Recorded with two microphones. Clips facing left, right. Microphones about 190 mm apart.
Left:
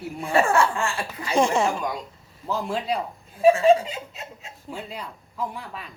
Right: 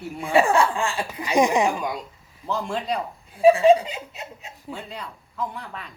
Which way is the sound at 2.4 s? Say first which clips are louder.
Even; 5° left (ahead or behind).